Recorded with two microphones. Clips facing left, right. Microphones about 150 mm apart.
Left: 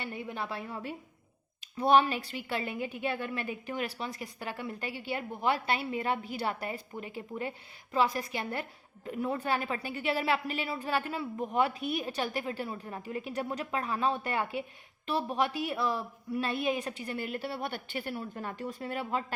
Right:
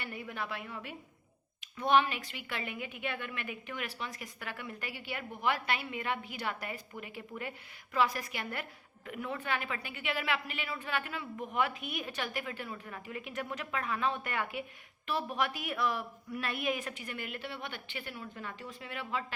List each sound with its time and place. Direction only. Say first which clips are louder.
0.0 s a woman's voice: left 3 dB; 25° left (ahead or behind)